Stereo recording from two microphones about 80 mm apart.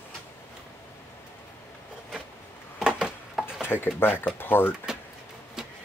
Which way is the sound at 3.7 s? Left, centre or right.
Left.